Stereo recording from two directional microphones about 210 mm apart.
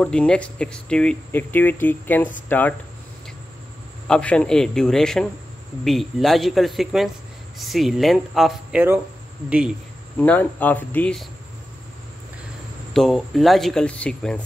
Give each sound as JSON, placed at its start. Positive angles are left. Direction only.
{"t": 0.0, "sound": "speech", "side_deg": 5}
{"t": 4.1, "sound": "speech", "side_deg": 5}
{"t": 10.1, "sound": "speech", "side_deg": 10}
{"t": 12.9, "sound": "speech", "side_deg": 0}